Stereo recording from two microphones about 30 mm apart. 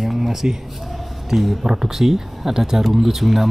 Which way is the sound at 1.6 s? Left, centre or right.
Centre.